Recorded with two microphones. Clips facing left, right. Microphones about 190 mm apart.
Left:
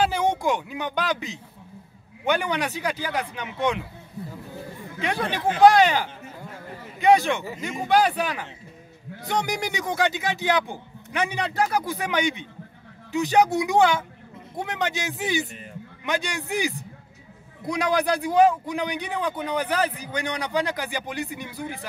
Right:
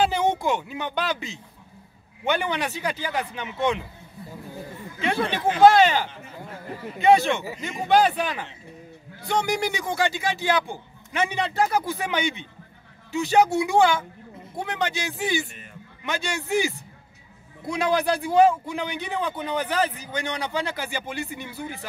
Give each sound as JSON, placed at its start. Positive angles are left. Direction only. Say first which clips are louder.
{"t": 0.1, "sound": "speech", "louder": "even", "side_deg": 10}
{"t": 5.0, "sound": "speech", "louder": "right 1 dB", "side_deg": 10}
{"t": 7.1, "sound": "speech", "louder": "even", "side_deg": 15}